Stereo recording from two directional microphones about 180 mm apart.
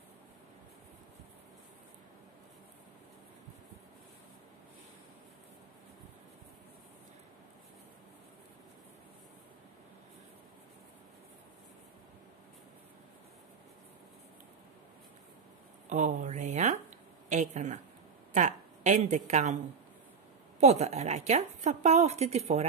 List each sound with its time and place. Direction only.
15.9 s a woman's voice: 45° right (ahead or behind)
20.6 s a woman's voice: 40° right (ahead or behind)